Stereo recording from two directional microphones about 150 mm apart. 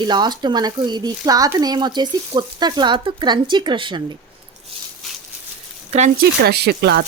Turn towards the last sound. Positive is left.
turn(degrees=-90)